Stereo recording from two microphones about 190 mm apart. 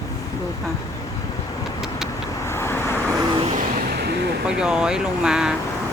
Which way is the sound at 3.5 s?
55° right (ahead or behind).